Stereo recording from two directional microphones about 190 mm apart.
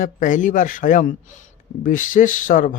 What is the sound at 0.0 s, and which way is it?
Speech, 45° left (ahead or behind).